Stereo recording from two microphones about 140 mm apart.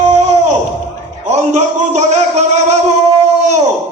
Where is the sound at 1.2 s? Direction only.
55° right (ahead or behind).